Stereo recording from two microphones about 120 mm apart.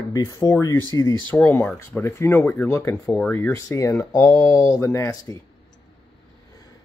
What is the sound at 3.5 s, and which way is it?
Speech, 30° left (ahead or behind).